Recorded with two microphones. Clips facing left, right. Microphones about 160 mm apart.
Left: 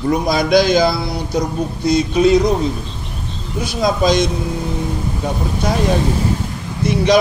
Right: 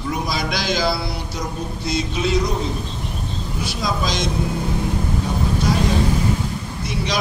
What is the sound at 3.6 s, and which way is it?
Speech, 50° left (ahead or behind).